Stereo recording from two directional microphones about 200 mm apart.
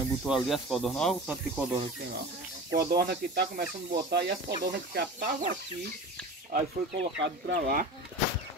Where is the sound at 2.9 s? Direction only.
50° right (ahead or behind).